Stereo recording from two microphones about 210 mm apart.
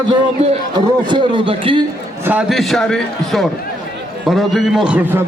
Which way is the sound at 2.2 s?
5° right (ahead or behind).